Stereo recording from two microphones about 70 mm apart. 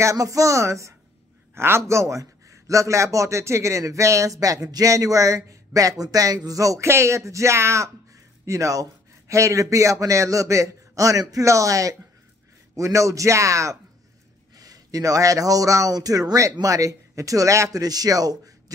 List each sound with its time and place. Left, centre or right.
0.0 s a man's voice: right
8.5 s a man's voice: right
14.6 s a man's voice: right
17.7 s speech: right